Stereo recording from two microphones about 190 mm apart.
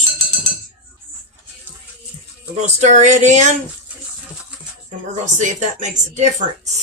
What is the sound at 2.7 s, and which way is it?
Speech, 40° right (ahead or behind).